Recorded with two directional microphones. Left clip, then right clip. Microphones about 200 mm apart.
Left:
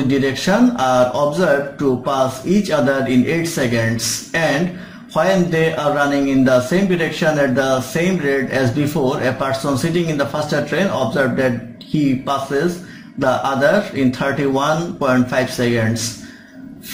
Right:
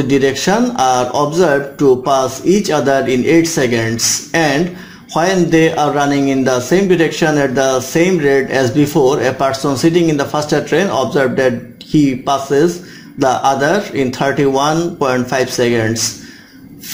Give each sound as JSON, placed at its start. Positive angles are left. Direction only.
{"t": 0.1, "sound": "a man's voice", "side_deg": -40}